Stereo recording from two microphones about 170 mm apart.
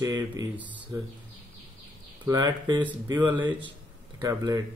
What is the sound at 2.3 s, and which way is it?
Speech, 20° right (ahead or behind).